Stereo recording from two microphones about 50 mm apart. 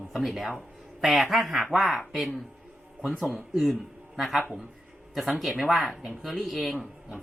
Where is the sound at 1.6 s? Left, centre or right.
Centre.